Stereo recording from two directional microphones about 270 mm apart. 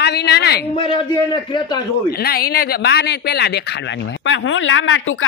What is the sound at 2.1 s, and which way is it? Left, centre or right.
Speech, left.